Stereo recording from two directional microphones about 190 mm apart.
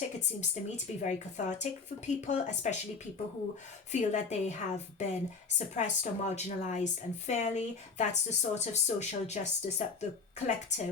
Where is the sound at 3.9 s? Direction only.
40° left (ahead or behind).